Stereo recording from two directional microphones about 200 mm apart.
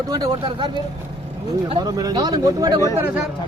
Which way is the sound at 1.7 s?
20° right (ahead or behind).